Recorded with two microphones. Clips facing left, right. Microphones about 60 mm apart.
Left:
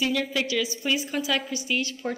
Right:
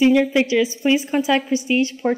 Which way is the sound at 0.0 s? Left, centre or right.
Right.